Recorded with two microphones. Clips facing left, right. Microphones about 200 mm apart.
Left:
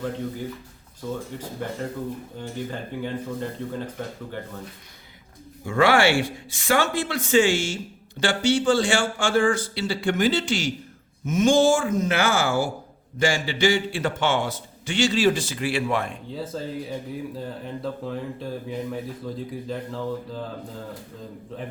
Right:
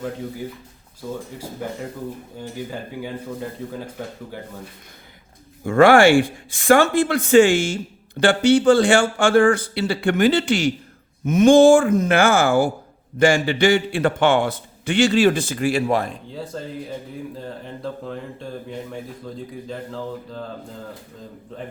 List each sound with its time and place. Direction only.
5.6 s a man's voice: 50° right (ahead or behind)
16.3 s speech: centre (ahead or behind)